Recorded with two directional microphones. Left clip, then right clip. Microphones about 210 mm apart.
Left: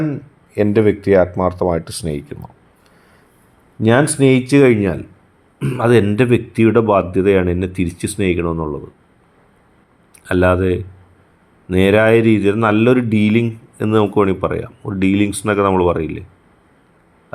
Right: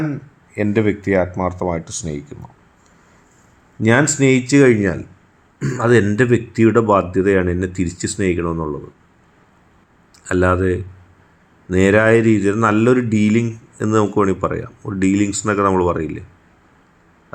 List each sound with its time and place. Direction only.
0.5 s speech: 25° left (ahead or behind)
3.8 s speech: 20° left (ahead or behind)
10.2 s speech: 20° left (ahead or behind)